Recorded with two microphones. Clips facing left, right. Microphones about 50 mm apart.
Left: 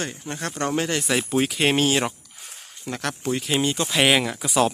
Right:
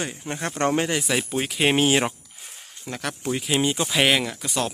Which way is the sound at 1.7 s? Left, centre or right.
Centre.